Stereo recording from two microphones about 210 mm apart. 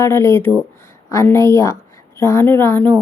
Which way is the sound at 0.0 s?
15° left (ahead or behind).